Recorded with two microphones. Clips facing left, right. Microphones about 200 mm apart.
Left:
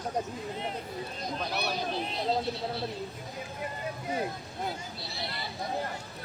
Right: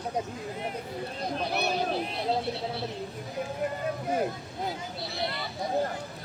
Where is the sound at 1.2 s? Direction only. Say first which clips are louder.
Right 4 dB; 55° right (ahead or behind).